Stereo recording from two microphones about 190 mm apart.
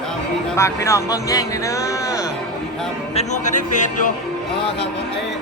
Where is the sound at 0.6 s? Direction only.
15° left (ahead or behind).